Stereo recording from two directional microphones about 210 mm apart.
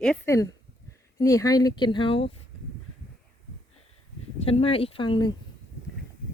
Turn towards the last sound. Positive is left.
turn(degrees=20)  # may be behind; listen again after turning